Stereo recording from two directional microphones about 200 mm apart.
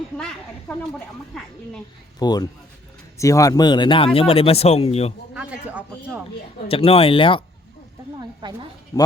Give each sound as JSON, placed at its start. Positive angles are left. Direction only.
{"t": 2.1, "sound": "speech", "side_deg": 20}
{"t": 5.3, "sound": "speech", "side_deg": -5}
{"t": 6.7, "sound": "speech", "side_deg": 30}
{"t": 8.4, "sound": "a woman's voice", "side_deg": -20}